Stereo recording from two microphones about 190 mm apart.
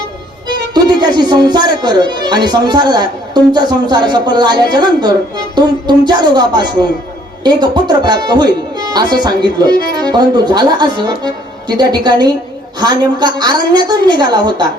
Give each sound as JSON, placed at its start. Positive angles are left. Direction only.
{"t": 0.7, "sound": "speech", "side_deg": -20}